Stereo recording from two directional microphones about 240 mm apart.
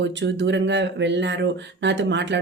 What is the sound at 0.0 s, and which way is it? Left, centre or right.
Speech, right.